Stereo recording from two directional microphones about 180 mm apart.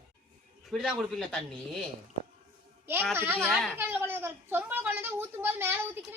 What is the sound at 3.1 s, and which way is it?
A woman's voice, 10° right (ahead or behind).